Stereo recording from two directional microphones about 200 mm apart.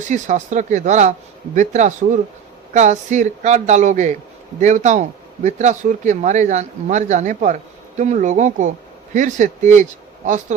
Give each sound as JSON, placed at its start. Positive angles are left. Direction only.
{"t": 0.0, "sound": "speech", "side_deg": -40}